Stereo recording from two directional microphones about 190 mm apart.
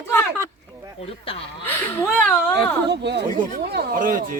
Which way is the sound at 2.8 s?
65° right (ahead or behind).